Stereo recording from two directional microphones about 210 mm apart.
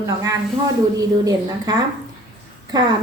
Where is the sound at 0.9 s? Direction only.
15° right (ahead or behind).